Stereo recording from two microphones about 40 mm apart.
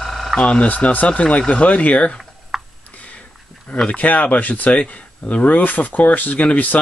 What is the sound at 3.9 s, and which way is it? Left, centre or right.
Speech, left.